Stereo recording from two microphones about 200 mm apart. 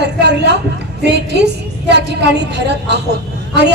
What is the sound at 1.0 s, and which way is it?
A woman's voice, 55° right (ahead or behind).